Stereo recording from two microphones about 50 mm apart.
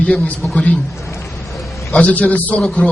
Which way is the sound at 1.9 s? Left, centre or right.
Left.